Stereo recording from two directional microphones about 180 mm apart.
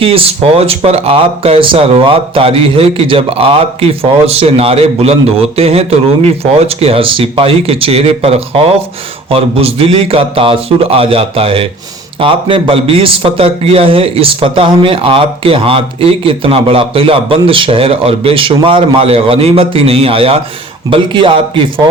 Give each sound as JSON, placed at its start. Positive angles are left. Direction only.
{"t": 0.0, "sound": "a man's voice", "side_deg": -30}